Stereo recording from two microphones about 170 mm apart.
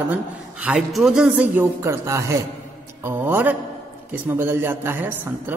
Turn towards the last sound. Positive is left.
turn(degrees=-10)  # may be behind; listen again after turning